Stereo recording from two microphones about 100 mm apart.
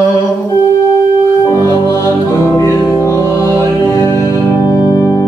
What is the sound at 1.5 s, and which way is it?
Music, 30° left (ahead or behind).